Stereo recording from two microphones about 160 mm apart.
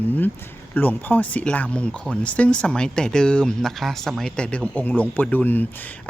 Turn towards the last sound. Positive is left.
turn(degrees=10)  # may be behind; listen again after turning